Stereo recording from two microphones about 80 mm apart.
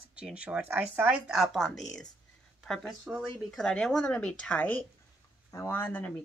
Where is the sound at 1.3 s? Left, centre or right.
Centre; by 6.0 s left.